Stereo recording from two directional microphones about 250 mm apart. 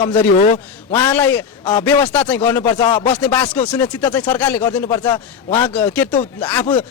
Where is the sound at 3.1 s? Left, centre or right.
Centre.